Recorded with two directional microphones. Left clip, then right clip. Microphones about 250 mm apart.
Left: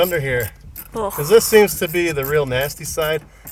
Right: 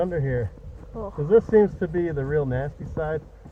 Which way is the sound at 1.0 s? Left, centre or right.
Left.